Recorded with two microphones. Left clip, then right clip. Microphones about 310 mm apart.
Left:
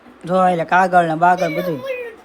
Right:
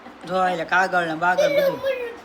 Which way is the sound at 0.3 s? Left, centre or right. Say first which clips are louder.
Left 6 dB; centre.